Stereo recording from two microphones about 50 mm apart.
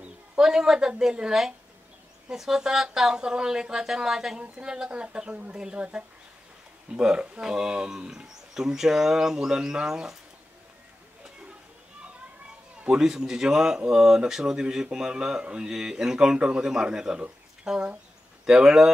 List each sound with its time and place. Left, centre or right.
0.4 s speech: centre
4.4 s a woman's voice: right
6.9 s speech: centre
12.8 s speech: centre